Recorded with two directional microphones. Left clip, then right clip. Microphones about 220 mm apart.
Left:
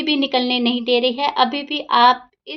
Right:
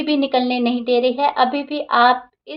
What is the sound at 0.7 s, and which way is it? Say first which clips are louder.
Speech: even; 50° left (ahead or behind).